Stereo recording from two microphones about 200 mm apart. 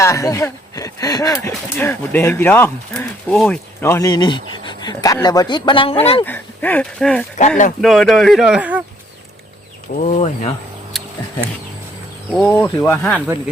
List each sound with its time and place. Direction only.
0.0 s speech: 15° left (ahead or behind)
6.2 s speech: 10° left (ahead or behind)
10.0 s speech: 30° left (ahead or behind)
10.9 s a sound: centre (ahead or behind)
12.3 s speech: 5° left (ahead or behind)
13.1 s speech: 10° right (ahead or behind)